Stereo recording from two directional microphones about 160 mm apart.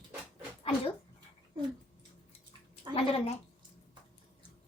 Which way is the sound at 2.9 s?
40° left (ahead or behind).